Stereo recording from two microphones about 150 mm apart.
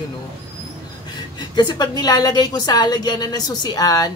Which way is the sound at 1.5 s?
25° left (ahead or behind).